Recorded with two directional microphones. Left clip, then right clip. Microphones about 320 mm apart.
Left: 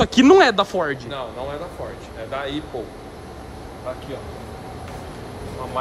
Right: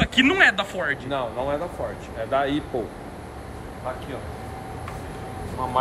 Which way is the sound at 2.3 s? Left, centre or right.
Centre.